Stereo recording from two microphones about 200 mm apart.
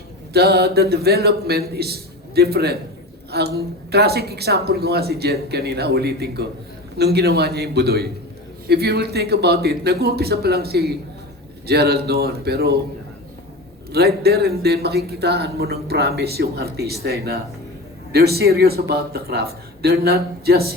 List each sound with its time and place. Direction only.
0.3 s a man's voice: 55° right (ahead or behind)
13.9 s a man's voice: 50° right (ahead or behind)